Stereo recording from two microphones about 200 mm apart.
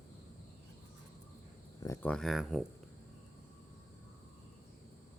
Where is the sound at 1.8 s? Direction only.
10° left (ahead or behind).